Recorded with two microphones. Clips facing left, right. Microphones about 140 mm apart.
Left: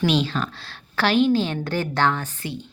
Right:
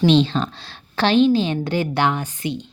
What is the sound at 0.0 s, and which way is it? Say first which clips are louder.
A woman's voice: right 6 dB; 25° right (ahead or behind).